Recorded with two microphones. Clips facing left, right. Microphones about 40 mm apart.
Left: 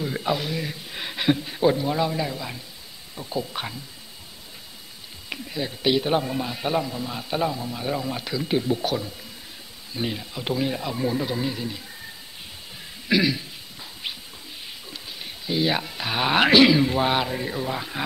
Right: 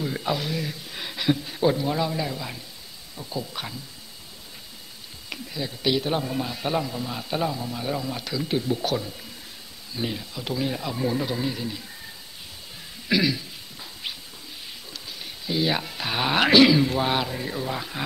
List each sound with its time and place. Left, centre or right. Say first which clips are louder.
0.0 s a man's voice: left 1 dB; centre
3.2 s a man's voice: left 3 dB; centre
5.3 s a man's voice: left 2 dB; centre
9.9 s a man's voice: left 1 dB; centre
13.1 s a man's voice: left 1 dB; centre
14.9 s speech: left 1 dB; centre